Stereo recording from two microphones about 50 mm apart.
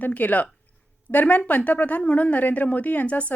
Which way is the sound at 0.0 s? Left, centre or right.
Left.